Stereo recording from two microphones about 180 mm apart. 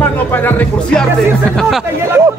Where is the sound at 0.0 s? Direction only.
10° left (ahead or behind).